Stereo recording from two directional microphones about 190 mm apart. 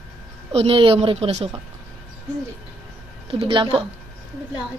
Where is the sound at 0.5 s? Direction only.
30° right (ahead or behind).